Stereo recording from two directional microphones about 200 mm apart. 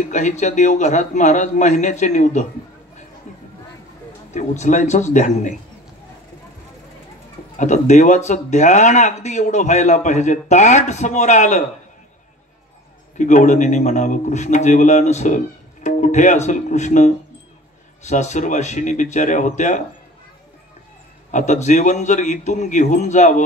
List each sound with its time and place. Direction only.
0.1 s a man's voice: 35° left (ahead or behind)
4.3 s a man's voice: 35° left (ahead or behind)
7.5 s a man's voice: 35° left (ahead or behind)
13.2 s a man's voice: 40° left (ahead or behind)
21.3 s a man's voice: 35° left (ahead or behind)